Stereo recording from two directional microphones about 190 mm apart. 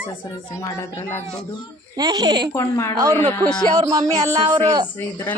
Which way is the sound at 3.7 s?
20° right (ahead or behind).